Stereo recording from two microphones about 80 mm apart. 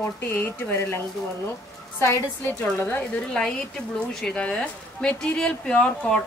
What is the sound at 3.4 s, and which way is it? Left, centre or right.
Speech, centre.